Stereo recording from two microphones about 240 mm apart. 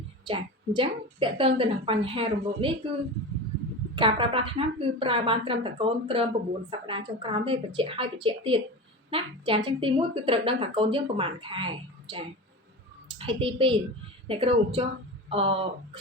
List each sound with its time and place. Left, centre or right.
0.3 s a woman's voice: centre
3.9 s a woman's voice: right